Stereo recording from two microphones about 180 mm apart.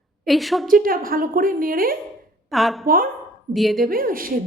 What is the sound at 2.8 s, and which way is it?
Speech, 50° right (ahead or behind).